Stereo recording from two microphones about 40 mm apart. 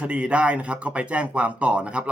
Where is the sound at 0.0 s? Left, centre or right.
Right.